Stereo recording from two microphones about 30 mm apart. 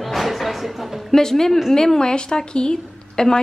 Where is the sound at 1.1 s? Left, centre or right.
Centre.